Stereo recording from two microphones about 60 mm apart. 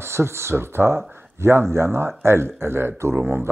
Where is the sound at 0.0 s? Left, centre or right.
Right.